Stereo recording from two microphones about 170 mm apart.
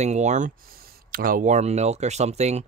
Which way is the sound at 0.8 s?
55° right (ahead or behind).